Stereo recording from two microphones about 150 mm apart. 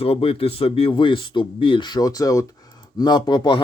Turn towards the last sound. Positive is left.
turn(degrees=30)  # may be behind; listen again after turning